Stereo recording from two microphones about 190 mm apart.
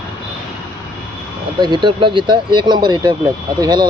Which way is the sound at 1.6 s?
25° right (ahead or behind).